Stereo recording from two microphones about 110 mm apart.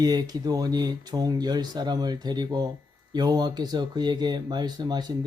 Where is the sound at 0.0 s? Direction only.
35° right (ahead or behind).